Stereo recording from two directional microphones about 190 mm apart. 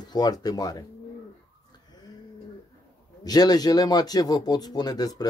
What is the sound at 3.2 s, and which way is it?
Speech, 20° left (ahead or behind).